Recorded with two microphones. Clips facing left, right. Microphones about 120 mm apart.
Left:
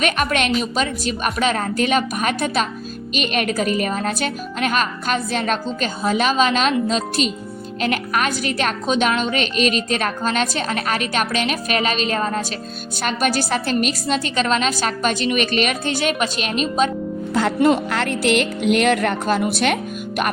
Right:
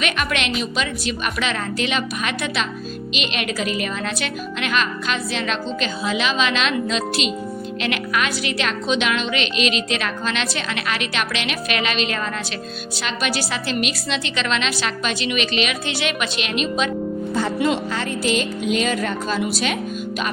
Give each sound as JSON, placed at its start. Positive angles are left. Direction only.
{"t": 0.0, "sound": "a woman's voice", "side_deg": 40}
{"t": 17.3, "sound": "a woman's voice", "side_deg": 75}